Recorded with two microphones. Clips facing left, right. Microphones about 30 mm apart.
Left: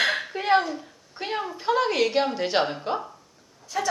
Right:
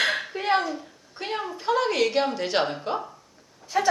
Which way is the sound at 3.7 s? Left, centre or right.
Centre.